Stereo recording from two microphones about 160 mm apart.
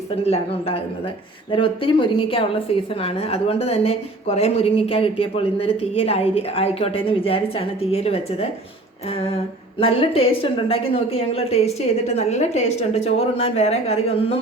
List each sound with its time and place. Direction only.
0.3 s a woman's voice: 35° left (ahead or behind)